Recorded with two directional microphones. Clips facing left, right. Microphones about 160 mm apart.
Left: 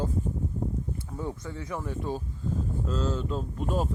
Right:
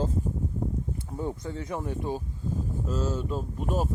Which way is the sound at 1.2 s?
20° right (ahead or behind).